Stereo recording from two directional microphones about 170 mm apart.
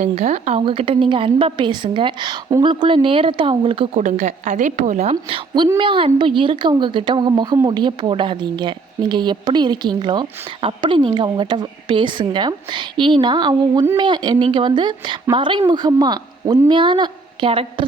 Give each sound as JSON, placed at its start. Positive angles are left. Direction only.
{"t": 0.0, "sound": "a woman's voice", "side_deg": -40}
{"t": 4.0, "sound": "a woman's voice", "side_deg": -45}
{"t": 5.6, "sound": "a woman's voice", "side_deg": -25}